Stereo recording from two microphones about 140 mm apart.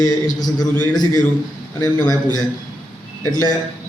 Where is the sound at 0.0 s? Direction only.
30° left (ahead or behind).